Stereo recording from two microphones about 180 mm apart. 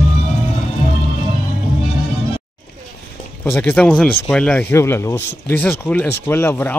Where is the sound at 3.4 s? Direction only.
10° left (ahead or behind).